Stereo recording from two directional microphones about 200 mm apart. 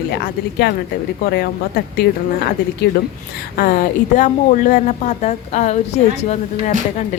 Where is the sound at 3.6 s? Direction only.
45° left (ahead or behind).